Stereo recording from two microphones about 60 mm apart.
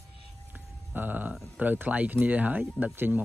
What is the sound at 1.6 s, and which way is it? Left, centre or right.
Speech, right.